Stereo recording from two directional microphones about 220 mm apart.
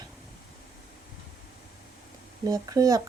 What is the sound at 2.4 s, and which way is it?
Speech, 15° right (ahead or behind).